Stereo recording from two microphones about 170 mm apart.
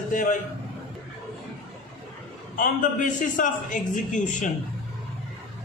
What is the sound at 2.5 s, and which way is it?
A man's voice, 50° left (ahead or behind).